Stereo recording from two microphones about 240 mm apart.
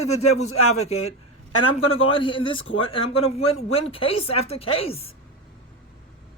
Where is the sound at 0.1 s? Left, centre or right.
Left.